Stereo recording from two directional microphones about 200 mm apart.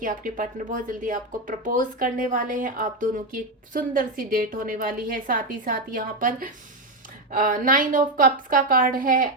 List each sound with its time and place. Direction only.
0.0 s a woman's voice: 40° right (ahead or behind)